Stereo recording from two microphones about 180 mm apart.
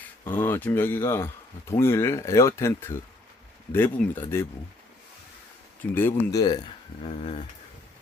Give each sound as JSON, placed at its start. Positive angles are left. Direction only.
{"t": 0.3, "sound": "speech", "side_deg": 10}
{"t": 5.9, "sound": "speech", "side_deg": 10}